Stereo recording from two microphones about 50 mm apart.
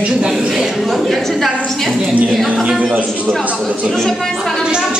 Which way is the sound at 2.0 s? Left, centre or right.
Right.